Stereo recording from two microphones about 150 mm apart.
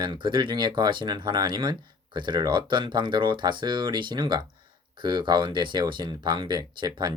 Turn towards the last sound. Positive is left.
turn(degrees=-30)  # may be behind; listen again after turning